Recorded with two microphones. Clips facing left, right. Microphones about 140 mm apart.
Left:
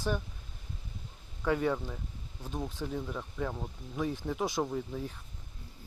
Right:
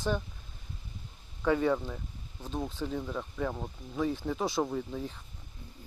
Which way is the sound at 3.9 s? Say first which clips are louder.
Right 2 dB; 10° left (ahead or behind).